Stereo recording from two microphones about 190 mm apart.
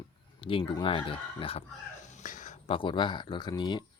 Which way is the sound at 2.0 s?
40° left (ahead or behind).